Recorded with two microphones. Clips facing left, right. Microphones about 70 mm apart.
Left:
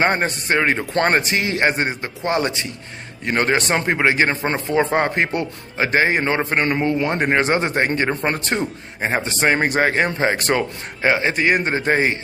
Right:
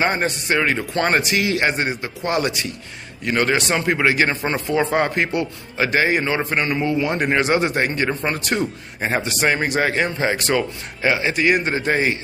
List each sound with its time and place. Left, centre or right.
0.2 s a man's voice: left